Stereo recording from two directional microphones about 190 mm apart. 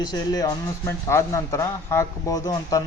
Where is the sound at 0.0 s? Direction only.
20° left (ahead or behind).